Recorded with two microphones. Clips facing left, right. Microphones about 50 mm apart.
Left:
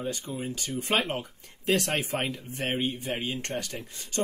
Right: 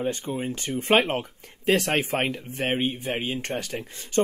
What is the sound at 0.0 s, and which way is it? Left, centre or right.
A man's voice, right.